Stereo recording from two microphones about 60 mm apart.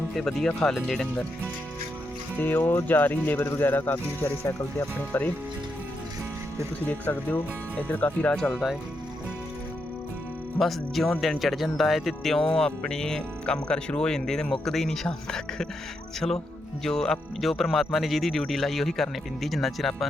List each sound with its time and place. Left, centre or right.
0.2 s speech: centre
2.4 s speech: left
6.8 s speech: left
8.5 s speech: centre
10.6 s speech: centre
16.8 s speech: centre